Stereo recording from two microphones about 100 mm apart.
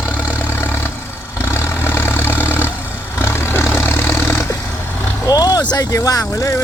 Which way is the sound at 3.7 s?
25° left (ahead or behind).